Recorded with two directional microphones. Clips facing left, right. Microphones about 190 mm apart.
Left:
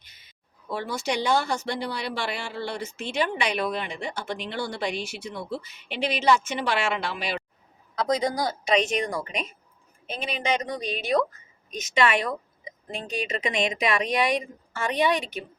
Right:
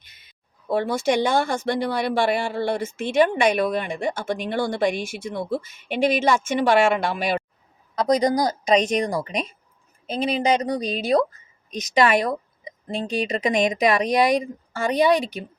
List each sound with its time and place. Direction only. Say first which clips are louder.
0.7 s a woman's voice: right 8 dB; 55° right (ahead or behind); by 15.4 s 35° right (ahead or behind)